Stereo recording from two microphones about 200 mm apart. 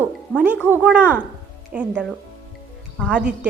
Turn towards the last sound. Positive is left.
turn(degrees=-5)  # may be behind; listen again after turning